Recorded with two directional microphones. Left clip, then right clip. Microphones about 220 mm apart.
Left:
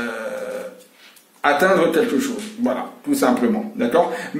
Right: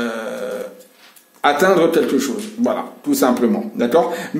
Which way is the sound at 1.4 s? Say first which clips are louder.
Right 2 dB; 55° right (ahead or behind).